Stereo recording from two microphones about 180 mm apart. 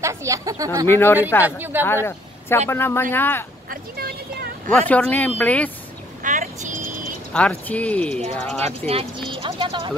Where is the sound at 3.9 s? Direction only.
55° right (ahead or behind).